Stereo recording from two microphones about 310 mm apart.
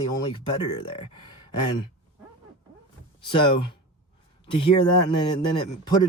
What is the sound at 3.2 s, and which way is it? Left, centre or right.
Speech, centre.